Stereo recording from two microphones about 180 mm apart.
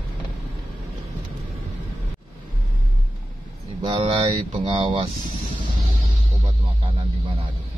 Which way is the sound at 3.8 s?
30° right (ahead or behind).